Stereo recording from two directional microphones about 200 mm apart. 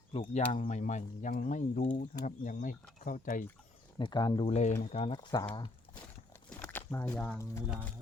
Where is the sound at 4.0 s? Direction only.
20° left (ahead or behind).